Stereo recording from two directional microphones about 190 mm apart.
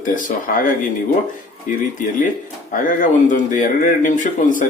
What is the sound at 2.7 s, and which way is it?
Speech, 45° left (ahead or behind).